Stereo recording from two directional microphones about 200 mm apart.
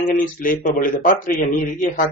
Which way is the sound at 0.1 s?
45° left (ahead or behind).